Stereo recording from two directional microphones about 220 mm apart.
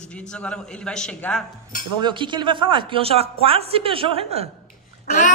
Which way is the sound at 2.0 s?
20° right (ahead or behind).